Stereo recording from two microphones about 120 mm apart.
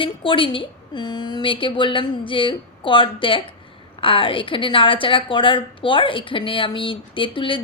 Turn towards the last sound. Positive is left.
turn(degrees=45)  # may be behind; listen again after turning